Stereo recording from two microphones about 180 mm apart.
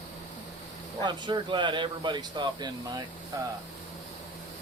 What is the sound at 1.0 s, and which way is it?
Speech, 25° right (ahead or behind).